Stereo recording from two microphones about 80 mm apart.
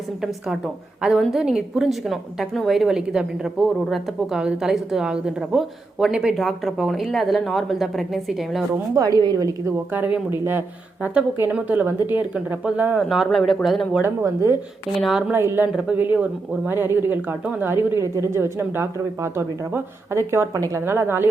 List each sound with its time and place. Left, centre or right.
0.2 s a woman's voice: centre
9.0 s a woman's voice: right
9.9 s a woman's voice: right
13.0 s a woman's voice: centre
14.0 s speech: right
14.9 s a woman's voice: centre
15.3 s speech: right